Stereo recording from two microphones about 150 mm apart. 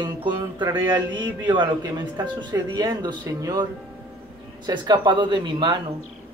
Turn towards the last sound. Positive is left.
turn(degrees=-30)  # may be behind; listen again after turning